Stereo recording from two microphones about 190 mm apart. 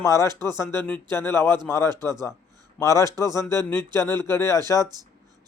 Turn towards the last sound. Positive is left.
turn(degrees=-20)  # may be behind; listen again after turning